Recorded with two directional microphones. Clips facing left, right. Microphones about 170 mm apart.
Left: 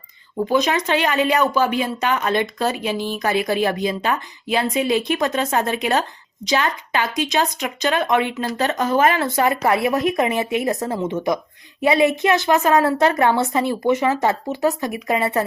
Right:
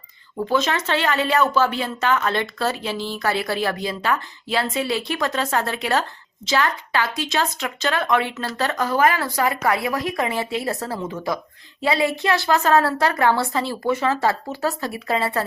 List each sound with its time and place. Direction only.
0.3 s speech: 15° left (ahead or behind)